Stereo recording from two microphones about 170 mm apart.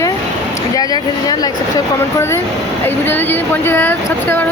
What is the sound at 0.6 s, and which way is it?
Speech, 20° left (ahead or behind).